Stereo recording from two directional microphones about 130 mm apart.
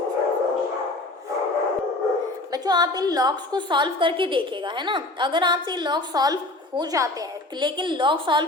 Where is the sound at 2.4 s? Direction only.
30° right (ahead or behind).